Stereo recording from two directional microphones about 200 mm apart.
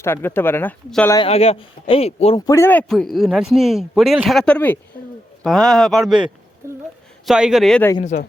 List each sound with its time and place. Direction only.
0.0 s speech: 10° left (ahead or behind)
1.1 s a man's voice: 25° left (ahead or behind)
2.5 s speech: 10° left (ahead or behind)
6.6 s a sound: 15° right (ahead or behind)
7.3 s speech: centre (ahead or behind)